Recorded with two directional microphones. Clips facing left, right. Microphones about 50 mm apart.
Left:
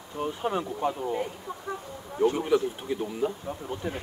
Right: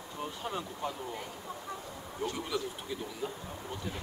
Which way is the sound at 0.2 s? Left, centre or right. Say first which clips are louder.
Left 9 dB; left.